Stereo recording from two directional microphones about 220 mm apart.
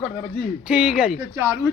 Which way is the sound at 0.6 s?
5° right (ahead or behind).